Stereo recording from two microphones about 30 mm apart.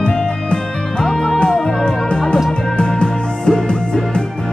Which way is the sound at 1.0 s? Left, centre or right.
Centre.